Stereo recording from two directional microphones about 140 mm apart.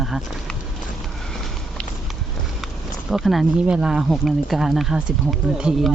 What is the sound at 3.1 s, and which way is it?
Speech, centre (ahead or behind).